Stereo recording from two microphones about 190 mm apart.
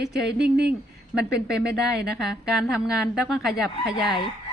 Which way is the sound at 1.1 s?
5° right (ahead or behind).